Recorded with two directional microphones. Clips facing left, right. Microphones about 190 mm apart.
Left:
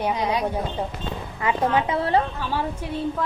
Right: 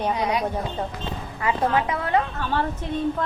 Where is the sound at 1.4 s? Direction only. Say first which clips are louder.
Left 1 dB; 20° left (ahead or behind).